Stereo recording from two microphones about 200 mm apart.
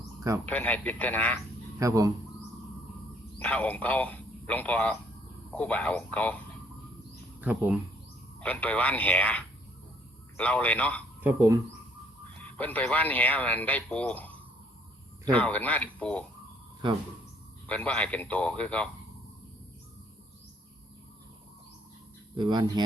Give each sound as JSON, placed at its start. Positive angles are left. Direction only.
{"t": 0.4, "sound": "speech", "side_deg": 5}
{"t": 1.8, "sound": "speech", "side_deg": -15}
{"t": 3.3, "sound": "a man's voice", "side_deg": 5}
{"t": 7.4, "sound": "speech", "side_deg": -5}
{"t": 8.4, "sound": "speech", "side_deg": 5}
{"t": 11.2, "sound": "speech", "side_deg": -10}
{"t": 12.4, "sound": "speech", "side_deg": 10}
{"t": 17.7, "sound": "speech", "side_deg": 5}
{"t": 22.4, "sound": "speech", "side_deg": -20}